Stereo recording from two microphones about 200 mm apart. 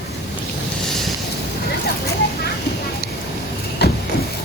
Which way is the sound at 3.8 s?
55° left (ahead or behind).